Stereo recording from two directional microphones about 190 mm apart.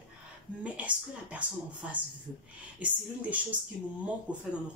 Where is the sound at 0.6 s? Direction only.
5° right (ahead or behind).